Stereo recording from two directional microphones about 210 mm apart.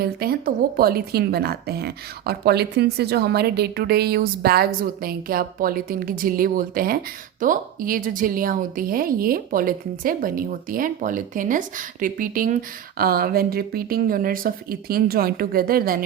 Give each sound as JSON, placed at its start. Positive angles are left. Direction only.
{"t": 0.0, "sound": "a woman's voice", "side_deg": -45}